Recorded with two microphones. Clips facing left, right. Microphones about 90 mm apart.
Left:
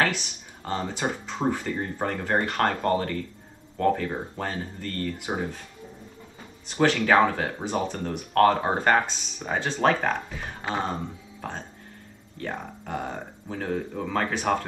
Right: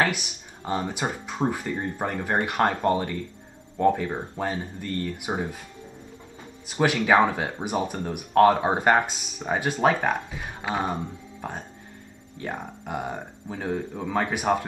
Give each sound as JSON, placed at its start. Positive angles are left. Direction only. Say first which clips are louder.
{"t": 0.0, "sound": "speech", "louder": "right 1 dB", "side_deg": -10}
{"t": 6.7, "sound": "speech", "louder": "even", "side_deg": -5}